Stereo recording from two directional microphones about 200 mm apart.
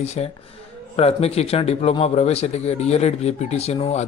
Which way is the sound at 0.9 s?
30° left (ahead or behind).